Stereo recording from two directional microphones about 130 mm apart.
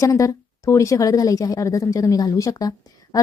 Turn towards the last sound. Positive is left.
turn(degrees=25)  # may be behind; listen again after turning